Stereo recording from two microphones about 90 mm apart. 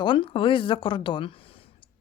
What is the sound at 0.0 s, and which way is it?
Speech, 70° left (ahead or behind).